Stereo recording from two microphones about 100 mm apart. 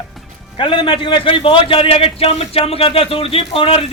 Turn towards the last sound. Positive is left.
turn(degrees=70)  # may be behind; listen again after turning